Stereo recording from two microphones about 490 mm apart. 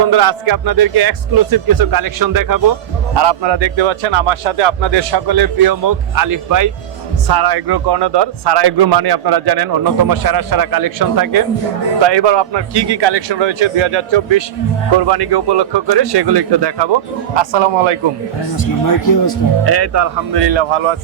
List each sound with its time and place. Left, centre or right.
0.1 s a man's voice: right
3.2 s a man's voice: right
12.0 s a man's voice: right
15.0 s a man's voice: right
17.3 s a man's voice: right
18.5 s speech: left
19.6 s speech: right
20.3 s a man's voice: right